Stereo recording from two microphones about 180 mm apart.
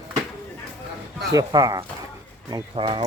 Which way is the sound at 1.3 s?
20° right (ahead or behind).